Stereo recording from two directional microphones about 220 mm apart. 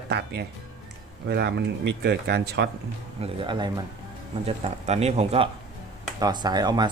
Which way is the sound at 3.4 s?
20° right (ahead or behind).